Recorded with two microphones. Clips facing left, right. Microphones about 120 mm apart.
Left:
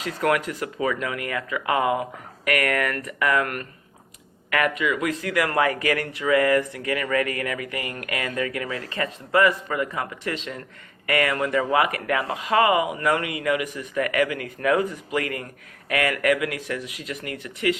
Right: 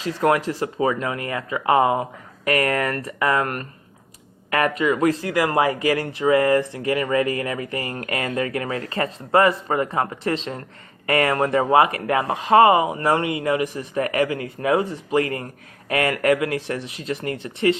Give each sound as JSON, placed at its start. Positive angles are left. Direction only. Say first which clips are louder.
{"t": 0.0, "sound": "speech", "louder": "right 3 dB", "side_deg": -30}